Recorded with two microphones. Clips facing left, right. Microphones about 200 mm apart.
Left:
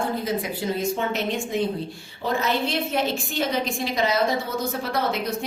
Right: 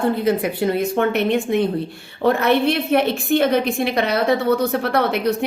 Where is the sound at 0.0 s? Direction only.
60° right (ahead or behind).